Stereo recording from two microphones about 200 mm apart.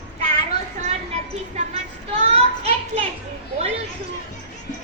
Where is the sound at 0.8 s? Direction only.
35° right (ahead or behind).